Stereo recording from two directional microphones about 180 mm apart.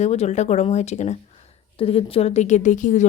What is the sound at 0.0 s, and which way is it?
Speech, 40° left (ahead or behind).